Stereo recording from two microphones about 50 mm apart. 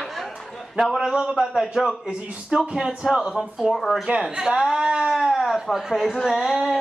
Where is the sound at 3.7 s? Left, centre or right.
Centre.